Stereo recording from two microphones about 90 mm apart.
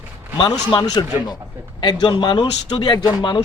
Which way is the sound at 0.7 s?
50° left (ahead or behind).